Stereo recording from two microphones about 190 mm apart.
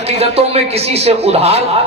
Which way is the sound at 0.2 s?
30° right (ahead or behind).